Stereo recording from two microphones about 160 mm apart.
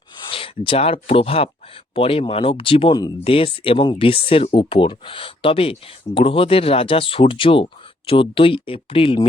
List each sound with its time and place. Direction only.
0.3 s speech: 35° left (ahead or behind)